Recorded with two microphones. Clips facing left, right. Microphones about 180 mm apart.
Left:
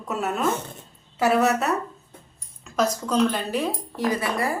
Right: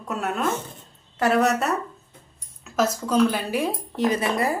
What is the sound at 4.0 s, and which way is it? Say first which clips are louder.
Speech: right 2 dB; 20° right (ahead or behind).